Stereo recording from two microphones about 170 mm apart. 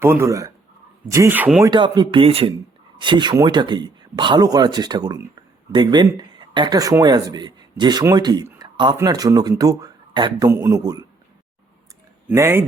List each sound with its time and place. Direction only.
0.0 s speech: 15° right (ahead or behind)
1.6 s speech: 25° right (ahead or behind)
12.3 s speech: 15° right (ahead or behind)